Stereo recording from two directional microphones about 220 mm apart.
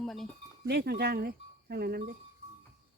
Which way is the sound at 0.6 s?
45° right (ahead or behind).